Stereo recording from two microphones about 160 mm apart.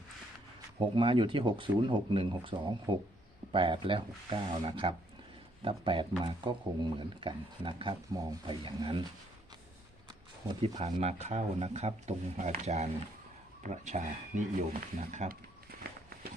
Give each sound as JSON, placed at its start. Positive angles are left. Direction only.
{"t": 0.8, "sound": "speech", "side_deg": -30}
{"t": 11.0, "sound": "speech", "side_deg": -40}